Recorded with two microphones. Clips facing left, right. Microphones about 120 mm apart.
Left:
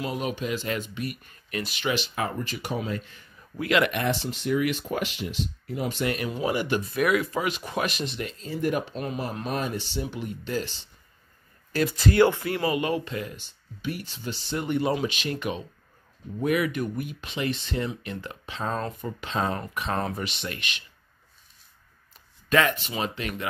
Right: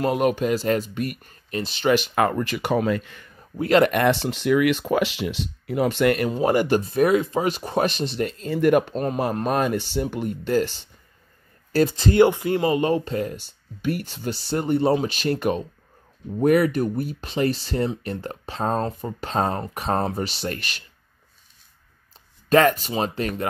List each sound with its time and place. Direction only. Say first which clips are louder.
0.0 s speech: right 9 dB; 55° right (ahead or behind); by 1.9 s 30° right (ahead or behind)
1.9 s speech: right 9 dB; 55° right (ahead or behind); by 3.3 s 70° right (ahead or behind)
3.3 s speech: right 6 dB; 35° right (ahead or behind)
3.9 s speech: right 7 dB; 65° right (ahead or behind)
6.4 s speech: right 7 dB; 45° right (ahead or behind)
6.8 s speech: right 5 dB; 30° right (ahead or behind)
8.2 s speech: right 8 dB; 45° right (ahead or behind)
8.5 s speech: right 9 dB; 65° right (ahead or behind)
8.9 s speech: right 7 dB; 45° right (ahead or behind)
11.7 s speech: right 4 dB; 30° right (ahead or behind)
22.5 s speech: right 6 dB; 40° right (ahead or behind)